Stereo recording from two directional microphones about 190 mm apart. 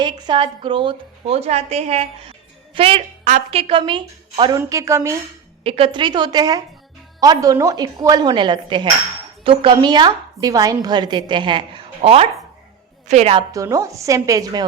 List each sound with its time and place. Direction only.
0.0 s speech: 25° right (ahead or behind)
5.6 s a woman's voice: 30° right (ahead or behind)
13.5 s speech: 15° right (ahead or behind)